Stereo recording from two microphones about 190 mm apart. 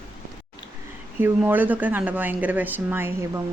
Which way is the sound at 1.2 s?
10° right (ahead or behind).